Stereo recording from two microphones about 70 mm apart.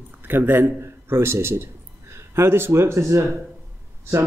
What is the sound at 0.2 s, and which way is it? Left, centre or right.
A man's voice, right.